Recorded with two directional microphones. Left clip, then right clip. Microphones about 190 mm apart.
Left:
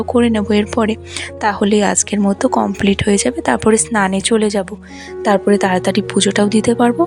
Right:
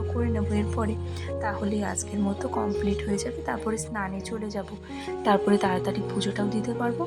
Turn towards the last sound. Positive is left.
turn(degrees=50)  # may be behind; listen again after turning